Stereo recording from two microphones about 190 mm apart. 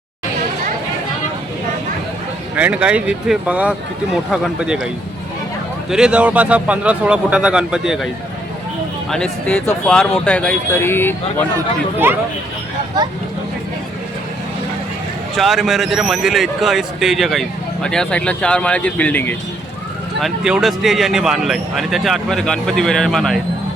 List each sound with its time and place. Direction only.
2.6 s speech: 5° right (ahead or behind)
5.9 s speech: 5° right (ahead or behind); by 11.4 s 10° left (ahead or behind)
12.0 s speech: 10° right (ahead or behind)
15.4 s speech: centre (ahead or behind)
20.2 s speech: centre (ahead or behind)